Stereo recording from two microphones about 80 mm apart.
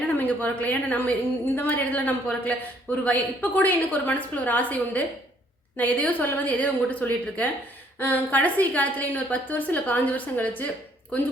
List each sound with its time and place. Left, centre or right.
0.1 s a woman's voice: left